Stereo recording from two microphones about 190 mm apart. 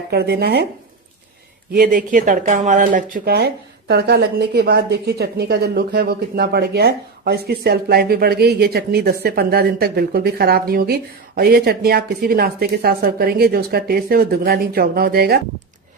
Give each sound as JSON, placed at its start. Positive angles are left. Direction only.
{"t": 0.1, "sound": "speech", "side_deg": -60}
{"t": 1.7, "sound": "a woman's voice", "side_deg": -50}